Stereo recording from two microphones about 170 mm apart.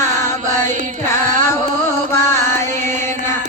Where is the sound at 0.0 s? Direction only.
15° left (ahead or behind).